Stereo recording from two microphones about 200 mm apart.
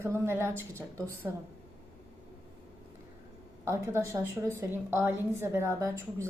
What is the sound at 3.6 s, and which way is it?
A woman's voice, 15° right (ahead or behind).